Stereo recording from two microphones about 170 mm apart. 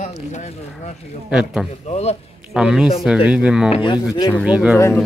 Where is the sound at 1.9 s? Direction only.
40° left (ahead or behind).